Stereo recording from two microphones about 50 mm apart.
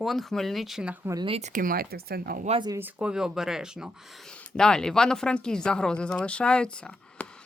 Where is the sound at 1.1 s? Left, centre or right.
Right.